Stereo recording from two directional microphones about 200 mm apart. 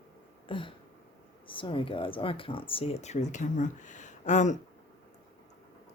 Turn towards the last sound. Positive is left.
turn(degrees=35)  # may be behind; listen again after turning